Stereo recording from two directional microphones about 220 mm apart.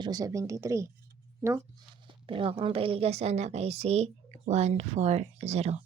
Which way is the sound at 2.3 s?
25° right (ahead or behind).